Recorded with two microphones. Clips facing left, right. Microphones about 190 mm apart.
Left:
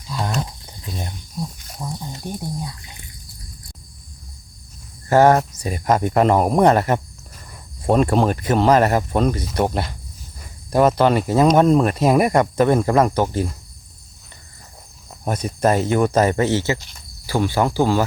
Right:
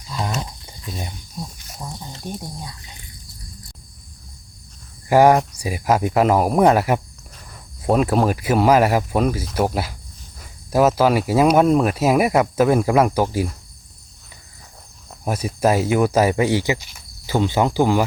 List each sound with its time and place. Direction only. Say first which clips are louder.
0.1 s a sound: left 1 dB; centre (ahead or behind)
2.1 s speech: left 2 dB; 10° left (ahead or behind)
5.0 s speech: even; 10° right (ahead or behind)
15.2 s speech: even; 5° right (ahead or behind)